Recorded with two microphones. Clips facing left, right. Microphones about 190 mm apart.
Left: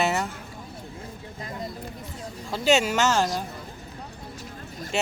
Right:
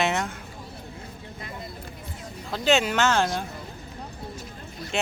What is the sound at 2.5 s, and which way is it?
Speech, 10° left (ahead or behind).